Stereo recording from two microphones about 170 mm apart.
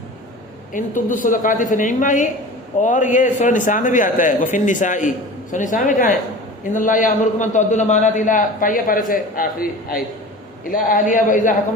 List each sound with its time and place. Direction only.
0.7 s a man's voice: 50° left (ahead or behind)